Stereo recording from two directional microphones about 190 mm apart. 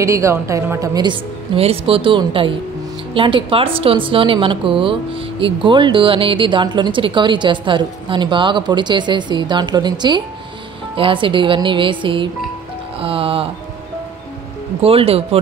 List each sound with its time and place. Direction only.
0.0 s a woman's voice: 15° right (ahead or behind)
13.0 s music: 30° right (ahead or behind)
14.8 s speech: 30° right (ahead or behind)